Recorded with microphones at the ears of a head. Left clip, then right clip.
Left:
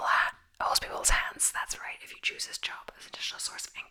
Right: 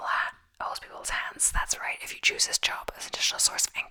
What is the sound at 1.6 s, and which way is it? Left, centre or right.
Speech, right.